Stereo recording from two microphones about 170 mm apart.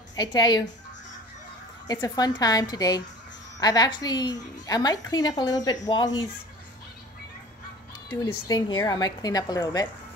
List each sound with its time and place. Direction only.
0.1 s speech: 25° left (ahead or behind)
1.9 s a woman's voice: 20° left (ahead or behind)
8.1 s a woman's voice: 25° left (ahead or behind)